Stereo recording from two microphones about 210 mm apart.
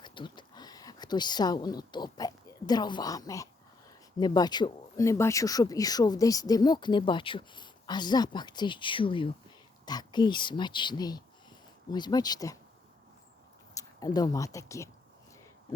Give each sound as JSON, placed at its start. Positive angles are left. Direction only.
{"t": 0.0, "sound": "a sound", "side_deg": 20}
{"t": 4.2, "sound": "speech", "side_deg": 20}
{"t": 13.7, "sound": "speech", "side_deg": 15}